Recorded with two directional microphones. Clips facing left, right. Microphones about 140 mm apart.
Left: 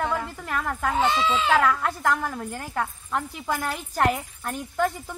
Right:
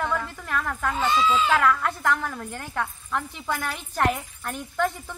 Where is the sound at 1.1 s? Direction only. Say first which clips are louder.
Right 2 dB; 70° left (ahead or behind).